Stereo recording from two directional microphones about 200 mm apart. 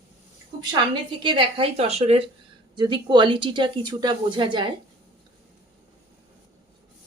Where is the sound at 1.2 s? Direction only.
25° right (ahead or behind).